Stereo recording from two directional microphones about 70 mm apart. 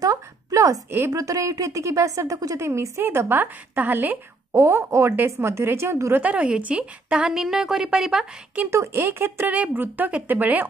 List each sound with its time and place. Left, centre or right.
0.0 s a sound: right
1.1 s a woman's voice: right
4.5 s a woman's voice: right
5.1 s a woman's voice: right
6.1 s a woman's voice: centre
8.6 s a woman's voice: right